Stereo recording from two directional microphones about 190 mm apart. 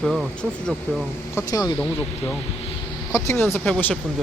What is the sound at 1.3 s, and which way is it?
Speech, 20° left (ahead or behind).